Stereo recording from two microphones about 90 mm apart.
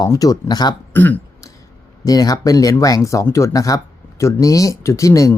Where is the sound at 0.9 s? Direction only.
20° left (ahead or behind).